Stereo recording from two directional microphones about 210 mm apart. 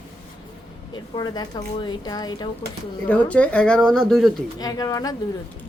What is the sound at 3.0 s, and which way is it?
Speech, 5° left (ahead or behind).